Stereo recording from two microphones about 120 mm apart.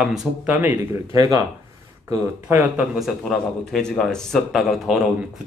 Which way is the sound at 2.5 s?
15° right (ahead or behind).